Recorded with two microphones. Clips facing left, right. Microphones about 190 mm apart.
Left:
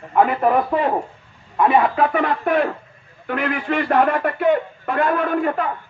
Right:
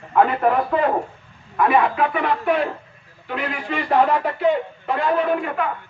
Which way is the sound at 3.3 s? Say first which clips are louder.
Left 4 dB; 55° left (ahead or behind).